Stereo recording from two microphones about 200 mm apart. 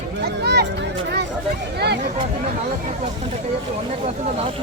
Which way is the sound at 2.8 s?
35° right (ahead or behind).